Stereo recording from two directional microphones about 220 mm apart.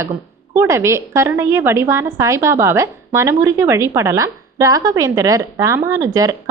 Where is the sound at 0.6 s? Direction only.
10° right (ahead or behind).